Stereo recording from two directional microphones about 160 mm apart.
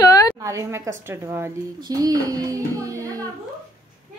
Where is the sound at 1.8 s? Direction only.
25° right (ahead or behind).